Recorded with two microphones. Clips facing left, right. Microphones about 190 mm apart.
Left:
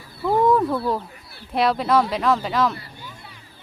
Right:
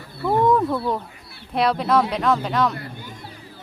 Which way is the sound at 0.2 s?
Centre (ahead or behind).